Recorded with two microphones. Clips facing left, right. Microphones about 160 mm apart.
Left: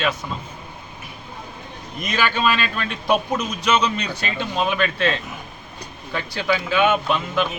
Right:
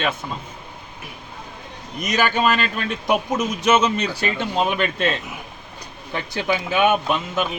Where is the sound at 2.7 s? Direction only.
20° right (ahead or behind).